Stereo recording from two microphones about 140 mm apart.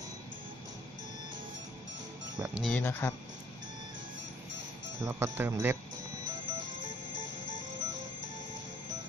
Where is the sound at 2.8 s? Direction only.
15° left (ahead or behind).